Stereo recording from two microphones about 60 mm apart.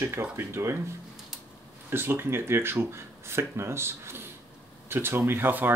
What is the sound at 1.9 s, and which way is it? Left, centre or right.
Speech, right.